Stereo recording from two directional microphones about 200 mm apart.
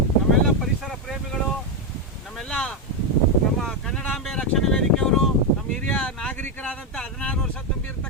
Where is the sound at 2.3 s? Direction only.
5° left (ahead or behind).